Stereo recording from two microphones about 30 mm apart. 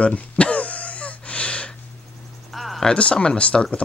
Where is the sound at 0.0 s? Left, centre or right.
Left.